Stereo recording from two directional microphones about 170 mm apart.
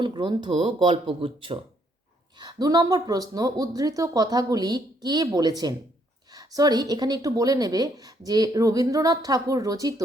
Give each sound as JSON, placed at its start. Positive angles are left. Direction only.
{"t": 0.0, "sound": "a woman's voice", "side_deg": -25}